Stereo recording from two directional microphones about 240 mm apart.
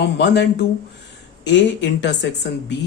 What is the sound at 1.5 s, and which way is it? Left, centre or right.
Speech, left.